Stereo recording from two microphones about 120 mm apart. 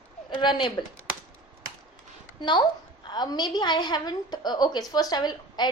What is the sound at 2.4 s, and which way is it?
A woman's voice, 40° left (ahead or behind).